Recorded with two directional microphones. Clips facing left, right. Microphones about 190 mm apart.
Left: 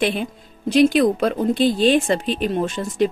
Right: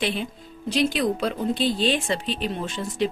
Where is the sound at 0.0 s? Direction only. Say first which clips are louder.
Left 5 dB; 50° left (ahead or behind).